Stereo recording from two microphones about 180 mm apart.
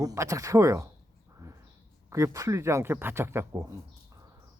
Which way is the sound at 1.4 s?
20° right (ahead or behind).